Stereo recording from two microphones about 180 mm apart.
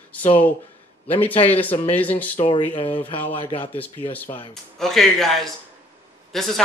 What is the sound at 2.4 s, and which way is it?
Speech, 30° left (ahead or behind).